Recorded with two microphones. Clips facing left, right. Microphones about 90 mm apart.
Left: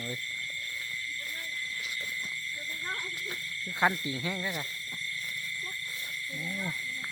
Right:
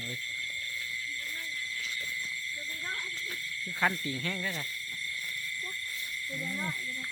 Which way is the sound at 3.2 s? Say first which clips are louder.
Left 1 dB; 20° left (ahead or behind).